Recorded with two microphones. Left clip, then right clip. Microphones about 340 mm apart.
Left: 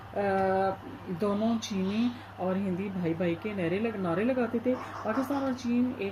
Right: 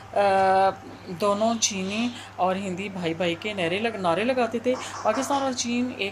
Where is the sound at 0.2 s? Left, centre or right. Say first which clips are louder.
Right 8 dB; right.